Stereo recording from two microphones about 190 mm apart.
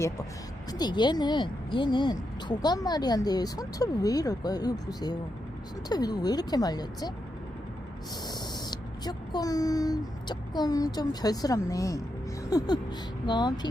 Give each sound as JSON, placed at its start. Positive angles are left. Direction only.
{"t": 0.7, "sound": "a woman's voice", "side_deg": 20}
{"t": 8.3, "sound": "a woman's voice", "side_deg": 20}